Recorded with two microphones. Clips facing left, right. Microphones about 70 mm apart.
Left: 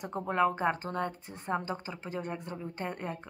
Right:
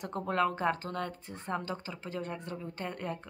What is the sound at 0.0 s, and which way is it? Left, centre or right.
Speech, centre.